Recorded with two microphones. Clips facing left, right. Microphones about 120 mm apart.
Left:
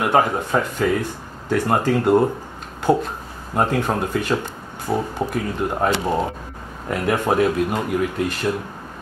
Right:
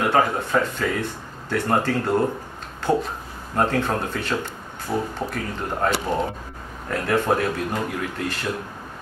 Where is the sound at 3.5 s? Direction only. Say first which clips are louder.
Left 2 dB; 15° left (ahead or behind).